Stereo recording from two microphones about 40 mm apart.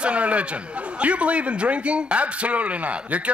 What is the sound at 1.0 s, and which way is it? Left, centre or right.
Speech, right.